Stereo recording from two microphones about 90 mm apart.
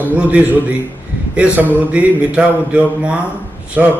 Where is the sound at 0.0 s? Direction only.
15° right (ahead or behind).